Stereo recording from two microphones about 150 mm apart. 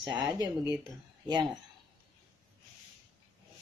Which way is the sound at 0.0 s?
30° right (ahead or behind).